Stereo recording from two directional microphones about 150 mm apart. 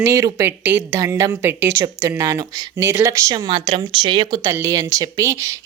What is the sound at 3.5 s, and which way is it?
Speech, 35° right (ahead or behind).